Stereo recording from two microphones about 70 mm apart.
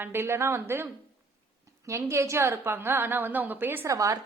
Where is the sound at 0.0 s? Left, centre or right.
Right.